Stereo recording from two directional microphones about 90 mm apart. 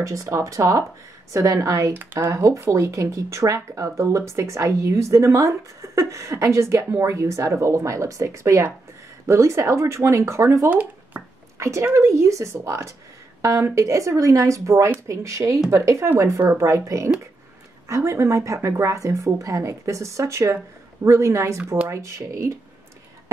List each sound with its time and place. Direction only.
0.0 s speech: 40° right (ahead or behind)
10.7 s a sound: 15° right (ahead or behind)
11.5 s speech: 35° right (ahead or behind)